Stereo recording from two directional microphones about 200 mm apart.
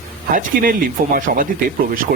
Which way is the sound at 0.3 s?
45° right (ahead or behind).